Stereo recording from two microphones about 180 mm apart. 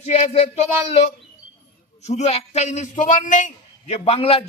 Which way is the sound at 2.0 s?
40° left (ahead or behind).